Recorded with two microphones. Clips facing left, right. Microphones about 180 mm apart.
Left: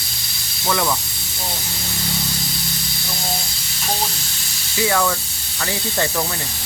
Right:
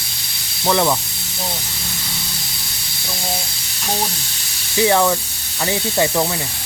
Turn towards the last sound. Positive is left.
turn(degrees=-20)  # may be behind; listen again after turning